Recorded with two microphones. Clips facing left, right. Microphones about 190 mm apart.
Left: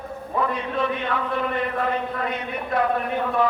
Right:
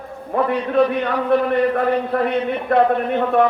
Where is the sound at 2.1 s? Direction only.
70° right (ahead or behind).